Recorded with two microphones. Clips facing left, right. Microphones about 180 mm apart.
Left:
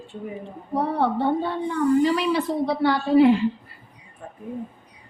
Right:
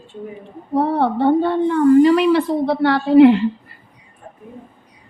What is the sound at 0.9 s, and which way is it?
A woman's voice, 65° right (ahead or behind).